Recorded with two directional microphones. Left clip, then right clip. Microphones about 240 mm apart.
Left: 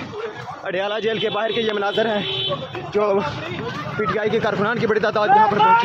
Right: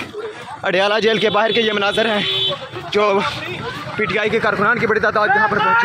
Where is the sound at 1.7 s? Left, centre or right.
Right; by 5.6 s centre.